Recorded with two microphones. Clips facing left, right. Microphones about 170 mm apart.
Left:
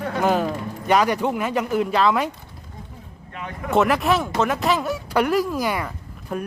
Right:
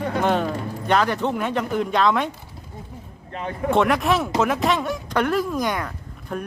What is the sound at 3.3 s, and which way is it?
Speech, 30° right (ahead or behind).